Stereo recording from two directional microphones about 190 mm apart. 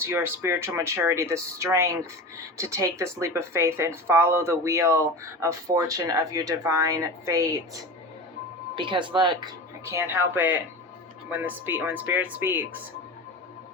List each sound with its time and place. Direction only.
0.0 s speech: 15° right (ahead or behind)
9.8 s speech: 15° right (ahead or behind)